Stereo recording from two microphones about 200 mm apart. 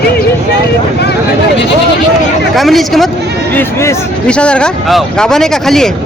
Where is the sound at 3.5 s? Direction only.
10° left (ahead or behind).